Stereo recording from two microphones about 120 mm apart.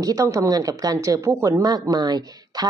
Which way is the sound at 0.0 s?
30° right (ahead or behind).